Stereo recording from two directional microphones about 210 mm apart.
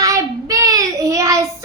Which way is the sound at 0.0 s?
15° right (ahead or behind).